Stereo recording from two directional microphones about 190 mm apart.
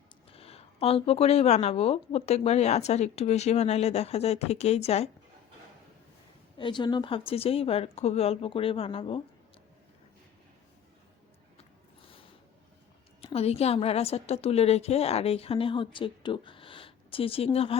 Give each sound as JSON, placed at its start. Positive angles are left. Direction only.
{"t": 0.3, "sound": "speech", "side_deg": 30}
{"t": 6.6, "sound": "speech", "side_deg": 25}
{"t": 13.2, "sound": "speech", "side_deg": 30}